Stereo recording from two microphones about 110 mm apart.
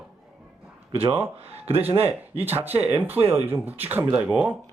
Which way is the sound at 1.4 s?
65° right (ahead or behind).